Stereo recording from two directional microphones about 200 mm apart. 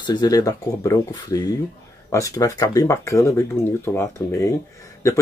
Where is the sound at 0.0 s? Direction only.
20° left (ahead or behind).